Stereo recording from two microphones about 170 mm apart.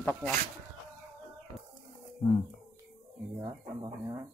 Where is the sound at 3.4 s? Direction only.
20° right (ahead or behind).